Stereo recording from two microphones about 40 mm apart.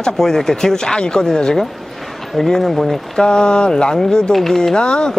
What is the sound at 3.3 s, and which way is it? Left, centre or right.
Speech, left.